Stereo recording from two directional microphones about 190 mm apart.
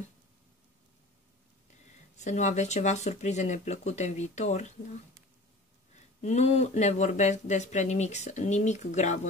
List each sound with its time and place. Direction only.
2.1 s speech: 40° left (ahead or behind)
6.2 s speech: 35° left (ahead or behind)